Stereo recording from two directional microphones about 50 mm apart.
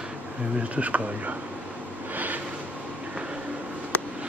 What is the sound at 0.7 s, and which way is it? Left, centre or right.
Speech, right.